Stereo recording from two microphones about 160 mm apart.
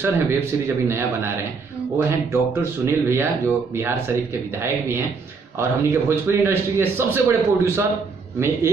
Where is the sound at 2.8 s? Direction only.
15° right (ahead or behind).